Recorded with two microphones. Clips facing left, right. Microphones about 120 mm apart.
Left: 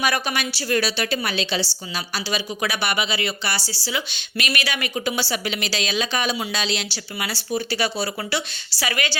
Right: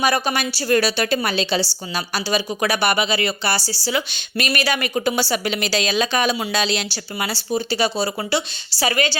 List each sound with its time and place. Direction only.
0.0 s a woman's voice: 30° right (ahead or behind)
7.3 s a woman's voice: 30° right (ahead or behind)